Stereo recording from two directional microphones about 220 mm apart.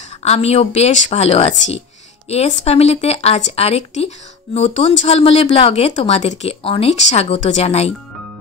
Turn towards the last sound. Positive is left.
turn(degrees=30)  # may be behind; listen again after turning